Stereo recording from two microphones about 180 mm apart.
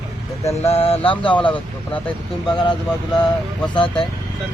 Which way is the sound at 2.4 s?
25° left (ahead or behind).